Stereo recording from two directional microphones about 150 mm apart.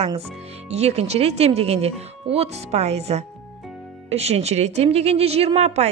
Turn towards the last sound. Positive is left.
turn(degrees=-45)  # may be behind; listen again after turning